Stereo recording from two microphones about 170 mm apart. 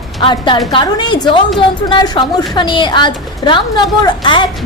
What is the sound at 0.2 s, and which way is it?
A woman's voice, 30° left (ahead or behind).